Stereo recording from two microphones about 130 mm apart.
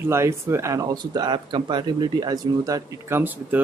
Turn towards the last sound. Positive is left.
turn(degrees=-15)  # may be behind; listen again after turning